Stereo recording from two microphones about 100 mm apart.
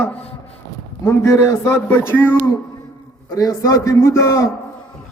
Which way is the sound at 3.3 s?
35° left (ahead or behind).